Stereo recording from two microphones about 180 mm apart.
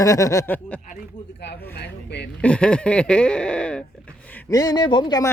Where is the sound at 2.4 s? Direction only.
5° left (ahead or behind).